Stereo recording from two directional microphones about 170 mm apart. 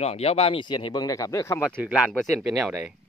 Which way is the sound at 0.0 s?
35° left (ahead or behind).